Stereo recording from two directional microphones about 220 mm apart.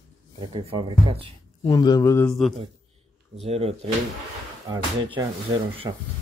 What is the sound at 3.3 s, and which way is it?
Speech, 25° right (ahead or behind).